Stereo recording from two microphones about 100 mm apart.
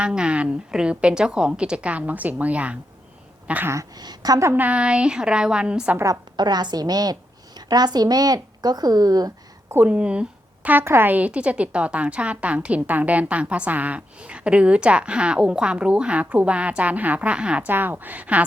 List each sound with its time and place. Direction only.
0.0 s a woman's voice: 10° right (ahead or behind)
3.7 s a woman's voice: 40° right (ahead or behind)
4.4 s a woman's voice: 15° right (ahead or behind)
6.3 s a woman's voice: 45° right (ahead or behind)
9.7 s a woman's voice: 15° right (ahead or behind)